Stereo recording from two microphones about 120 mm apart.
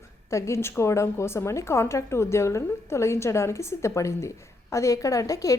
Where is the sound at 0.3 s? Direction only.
25° left (ahead or behind).